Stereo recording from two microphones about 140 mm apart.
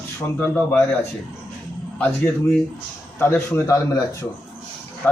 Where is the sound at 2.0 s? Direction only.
10° left (ahead or behind).